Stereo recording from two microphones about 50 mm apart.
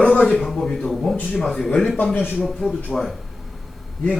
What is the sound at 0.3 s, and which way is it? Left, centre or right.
A man's voice, centre.